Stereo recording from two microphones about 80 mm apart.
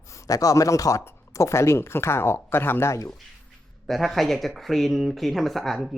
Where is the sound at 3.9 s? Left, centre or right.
Centre.